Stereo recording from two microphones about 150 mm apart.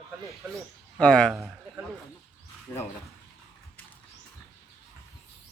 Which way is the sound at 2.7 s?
15° left (ahead or behind).